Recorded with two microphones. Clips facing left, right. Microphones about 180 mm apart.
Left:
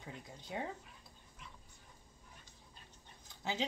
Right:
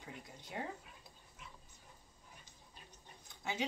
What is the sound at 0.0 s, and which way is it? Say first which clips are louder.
Speech: left 1 dB; 20° left (ahead or behind).